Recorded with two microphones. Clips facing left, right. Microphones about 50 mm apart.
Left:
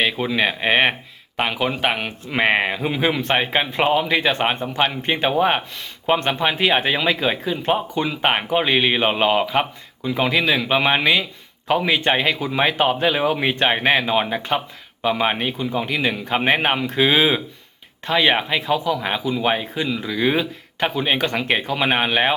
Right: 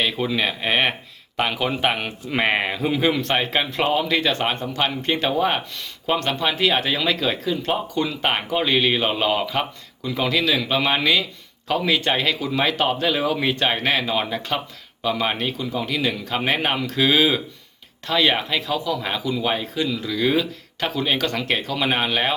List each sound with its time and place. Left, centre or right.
0.0 s speech: centre